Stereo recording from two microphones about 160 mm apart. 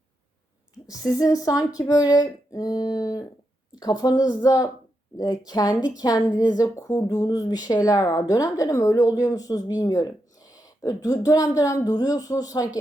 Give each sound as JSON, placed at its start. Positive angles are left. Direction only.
{"t": 0.9, "sound": "speech", "side_deg": 20}